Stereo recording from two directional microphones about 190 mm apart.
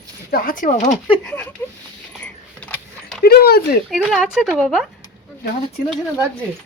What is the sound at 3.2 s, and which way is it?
Dog, 55° left (ahead or behind).